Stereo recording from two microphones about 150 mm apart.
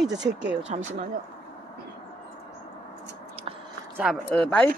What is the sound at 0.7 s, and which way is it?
Speech, 45° right (ahead or behind).